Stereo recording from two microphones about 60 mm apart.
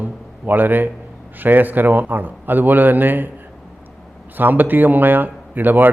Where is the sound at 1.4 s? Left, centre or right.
Right.